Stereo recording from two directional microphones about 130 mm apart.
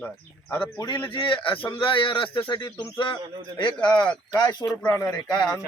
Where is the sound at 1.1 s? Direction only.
40° left (ahead or behind).